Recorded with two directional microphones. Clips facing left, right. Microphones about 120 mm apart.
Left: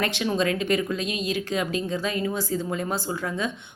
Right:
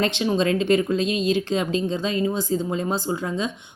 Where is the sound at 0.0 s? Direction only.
25° right (ahead or behind).